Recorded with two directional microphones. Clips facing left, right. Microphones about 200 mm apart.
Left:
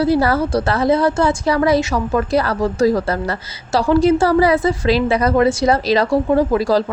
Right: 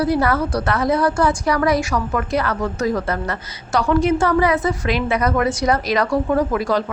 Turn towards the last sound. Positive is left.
turn(degrees=30)  # may be behind; listen again after turning